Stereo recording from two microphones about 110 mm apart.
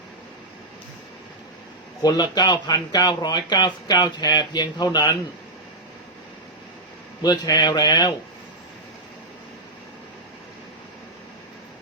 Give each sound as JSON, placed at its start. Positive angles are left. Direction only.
{"t": 2.0, "sound": "speech", "side_deg": 40}
{"t": 7.2, "sound": "speech", "side_deg": 40}